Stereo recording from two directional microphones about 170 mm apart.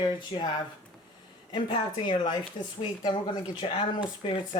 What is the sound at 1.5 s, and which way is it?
Speech, 25° left (ahead or behind).